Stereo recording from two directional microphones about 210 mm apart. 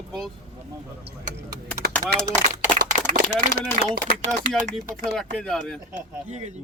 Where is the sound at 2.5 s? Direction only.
35° right (ahead or behind).